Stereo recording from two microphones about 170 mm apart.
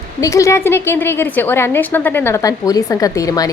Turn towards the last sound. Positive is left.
turn(degrees=20)  # may be behind; listen again after turning